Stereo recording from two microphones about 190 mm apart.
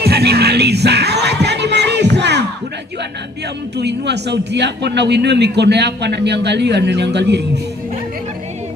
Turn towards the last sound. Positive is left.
turn(degrees=-65)  # may be behind; listen again after turning